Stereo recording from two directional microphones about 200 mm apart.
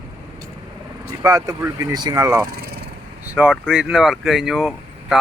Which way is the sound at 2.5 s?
50° right (ahead or behind).